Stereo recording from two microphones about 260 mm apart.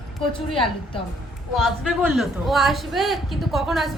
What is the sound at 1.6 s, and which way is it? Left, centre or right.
A man's voice, centre.